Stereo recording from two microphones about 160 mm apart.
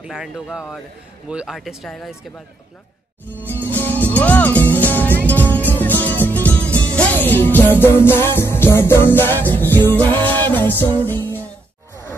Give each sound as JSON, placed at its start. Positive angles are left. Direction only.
{"t": 0.0, "sound": "speech", "side_deg": -5}
{"t": 3.6, "sound": "music", "side_deg": 10}
{"t": 6.6, "sound": "music", "side_deg": -15}
{"t": 6.9, "sound": "music", "side_deg": 10}